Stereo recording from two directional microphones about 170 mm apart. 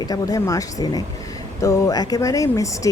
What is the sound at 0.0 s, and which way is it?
Speech, 20° left (ahead or behind).